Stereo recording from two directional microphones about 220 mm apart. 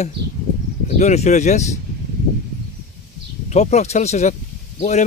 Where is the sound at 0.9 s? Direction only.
30° left (ahead or behind).